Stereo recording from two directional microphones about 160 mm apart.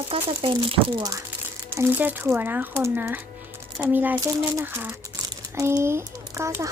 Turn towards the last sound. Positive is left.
turn(degrees=-20)  # may be behind; listen again after turning